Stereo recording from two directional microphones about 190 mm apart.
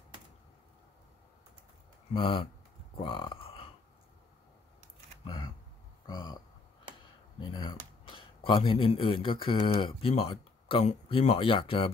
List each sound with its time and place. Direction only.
2.1 s speech: 25° left (ahead or behind)
5.2 s speech: 25° left (ahead or behind)
7.3 s a sound: 25° left (ahead or behind)
8.5 s speech: 25° left (ahead or behind)